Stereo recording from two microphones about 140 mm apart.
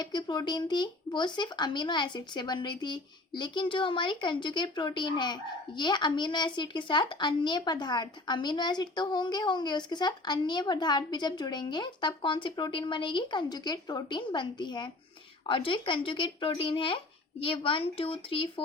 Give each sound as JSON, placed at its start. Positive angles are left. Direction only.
{"t": 0.0, "sound": "speech", "side_deg": 30}